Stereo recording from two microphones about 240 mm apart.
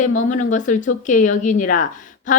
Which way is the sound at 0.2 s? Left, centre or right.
Left.